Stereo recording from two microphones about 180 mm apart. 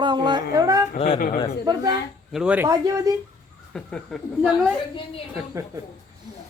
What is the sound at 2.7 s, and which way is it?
Speech, 20° right (ahead or behind).